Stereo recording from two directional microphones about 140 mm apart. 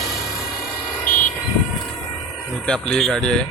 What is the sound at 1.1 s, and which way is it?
Vehicle, 15° left (ahead or behind).